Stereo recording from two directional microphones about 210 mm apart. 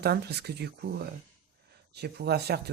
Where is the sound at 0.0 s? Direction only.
50° right (ahead or behind).